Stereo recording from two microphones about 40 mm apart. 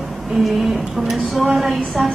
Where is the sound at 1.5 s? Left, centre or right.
Centre.